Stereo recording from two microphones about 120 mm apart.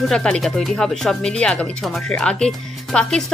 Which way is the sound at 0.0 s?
5° left (ahead or behind).